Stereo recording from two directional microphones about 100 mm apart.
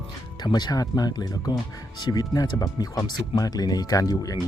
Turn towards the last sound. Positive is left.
turn(degrees=35)  # may be behind; listen again after turning